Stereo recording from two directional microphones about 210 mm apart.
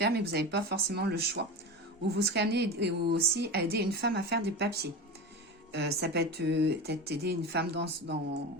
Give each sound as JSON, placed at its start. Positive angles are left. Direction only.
{"t": 0.0, "sound": "a woman's voice", "side_deg": -50}